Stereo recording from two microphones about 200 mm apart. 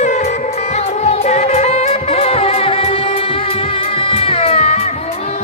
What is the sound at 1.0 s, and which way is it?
Music, 35° left (ahead or behind).